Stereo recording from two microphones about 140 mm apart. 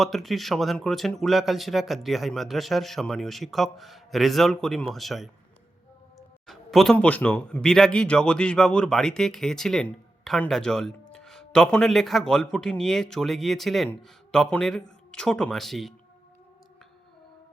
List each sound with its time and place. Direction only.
0.0 s speech: centre (ahead or behind)
6.1 s a sound: centre (ahead or behind)
6.9 s speech: 10° left (ahead or behind)